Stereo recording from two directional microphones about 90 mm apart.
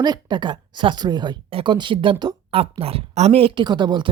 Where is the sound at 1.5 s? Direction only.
90° right.